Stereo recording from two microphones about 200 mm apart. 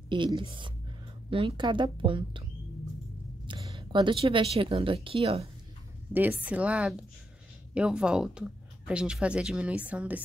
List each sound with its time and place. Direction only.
0.1 s a woman's voice: 25° right (ahead or behind)
3.4 s speech: 25° right (ahead or behind)
6.1 s a woman's voice: 10° right (ahead or behind)